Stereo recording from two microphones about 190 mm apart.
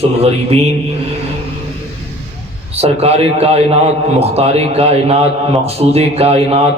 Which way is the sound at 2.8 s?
30° right (ahead or behind).